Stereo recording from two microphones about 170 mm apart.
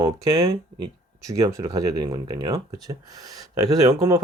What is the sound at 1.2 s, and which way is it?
Speech, 20° right (ahead or behind).